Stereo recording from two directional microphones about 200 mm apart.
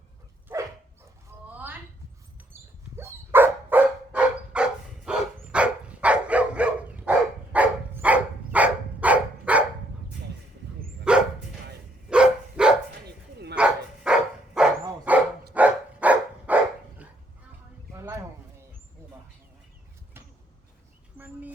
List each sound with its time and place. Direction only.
0.5 s dog: 10° right (ahead or behind)
1.5 s a sound: 10° right (ahead or behind)
3.0 s dog: 10° right (ahead or behind)
11.1 s dog: 5° right (ahead or behind)
13.1 s bow-wow: 55° right (ahead or behind)
13.6 s dog: 5° right (ahead or behind)
17.9 s a sound: 15° right (ahead or behind)